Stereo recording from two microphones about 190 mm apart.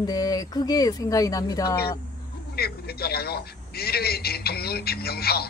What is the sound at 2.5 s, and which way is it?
A man's voice, 55° left (ahead or behind).